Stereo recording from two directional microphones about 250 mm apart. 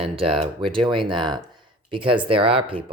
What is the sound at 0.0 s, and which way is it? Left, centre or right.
Speech, right.